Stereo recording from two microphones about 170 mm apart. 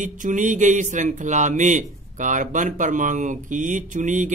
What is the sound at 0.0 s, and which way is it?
Mantra, 50° right (ahead or behind).